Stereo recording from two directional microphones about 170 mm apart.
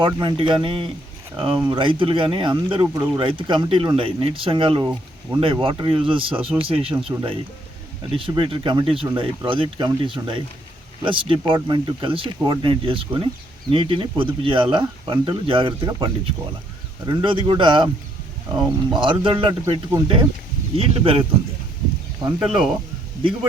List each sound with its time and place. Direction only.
0.0 s speech: 30° right (ahead or behind)
6.9 s speech: 15° right (ahead or behind)
8.1 s speech: 30° right (ahead or behind)
22.4 s speech: centre (ahead or behind)